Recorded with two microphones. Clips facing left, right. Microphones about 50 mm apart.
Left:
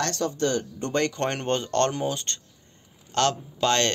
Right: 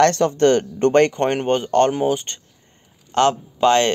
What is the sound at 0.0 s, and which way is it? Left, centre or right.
Speech, right.